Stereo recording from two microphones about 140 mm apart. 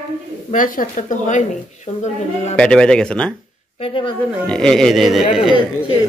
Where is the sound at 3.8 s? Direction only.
40° left (ahead or behind).